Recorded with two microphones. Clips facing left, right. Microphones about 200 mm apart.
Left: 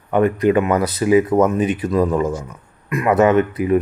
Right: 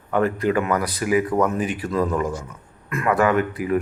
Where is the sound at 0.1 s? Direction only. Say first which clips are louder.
Left 5 dB; 15° left (ahead or behind).